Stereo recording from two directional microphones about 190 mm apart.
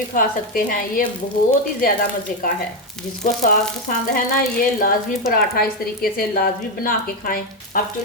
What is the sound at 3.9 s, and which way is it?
A woman's voice, 45° left (ahead or behind).